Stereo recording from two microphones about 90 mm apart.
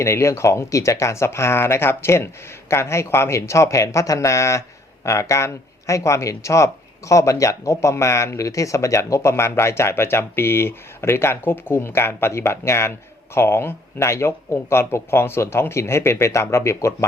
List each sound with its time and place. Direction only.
0.0 s speech: 30° left (ahead or behind)